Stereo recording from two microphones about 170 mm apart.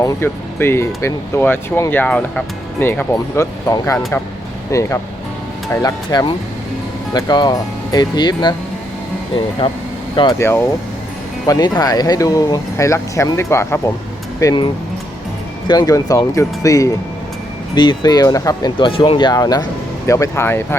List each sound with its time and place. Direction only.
0.0 s speech: 15° left (ahead or behind)
10.3 s speech: 15° left (ahead or behind)